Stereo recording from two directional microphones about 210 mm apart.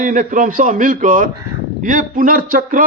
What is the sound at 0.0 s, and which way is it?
A man's voice, 40° right (ahead or behind).